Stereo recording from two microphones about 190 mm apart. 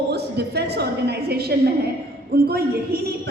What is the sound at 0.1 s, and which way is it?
A woman's voice, 60° right (ahead or behind).